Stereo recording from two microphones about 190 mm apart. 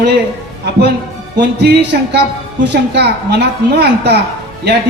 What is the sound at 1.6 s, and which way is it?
A man's voice, 60° right (ahead or behind).